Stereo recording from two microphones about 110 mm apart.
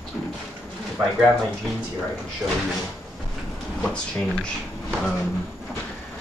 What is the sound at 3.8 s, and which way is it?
Speech, 10° left (ahead or behind).